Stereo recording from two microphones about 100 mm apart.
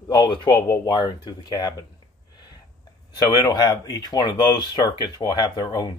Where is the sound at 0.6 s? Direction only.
30° left (ahead or behind).